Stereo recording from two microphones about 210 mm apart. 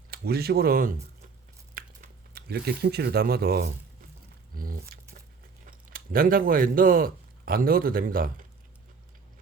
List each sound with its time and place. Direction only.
0.1 s speech: 50° right (ahead or behind)
1.7 s a sound: 45° right (ahead or behind)
4.5 s speech: 45° right (ahead or behind)